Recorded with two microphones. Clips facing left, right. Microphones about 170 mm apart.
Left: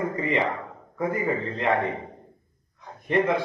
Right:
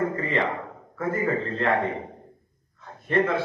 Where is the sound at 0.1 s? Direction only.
15° left (ahead or behind).